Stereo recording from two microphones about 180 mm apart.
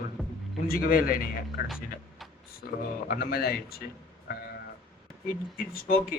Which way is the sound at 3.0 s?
55° left (ahead or behind).